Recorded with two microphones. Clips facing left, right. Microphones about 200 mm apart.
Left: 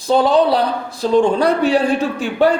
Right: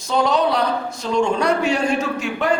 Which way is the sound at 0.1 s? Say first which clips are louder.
Left 5 dB; 30° left (ahead or behind).